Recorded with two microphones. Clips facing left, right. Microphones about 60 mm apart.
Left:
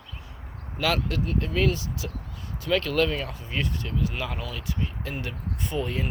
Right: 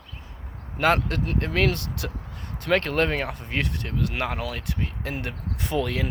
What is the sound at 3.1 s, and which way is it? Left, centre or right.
Speech, right.